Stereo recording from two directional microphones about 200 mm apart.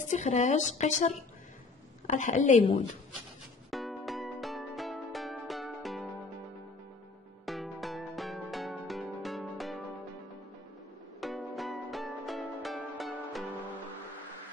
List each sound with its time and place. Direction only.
0.1 s a woman's voice: 35° left (ahead or behind)
3.7 s music: centre (ahead or behind)
7.4 s music: centre (ahead or behind)
11.1 s music: 5° left (ahead or behind)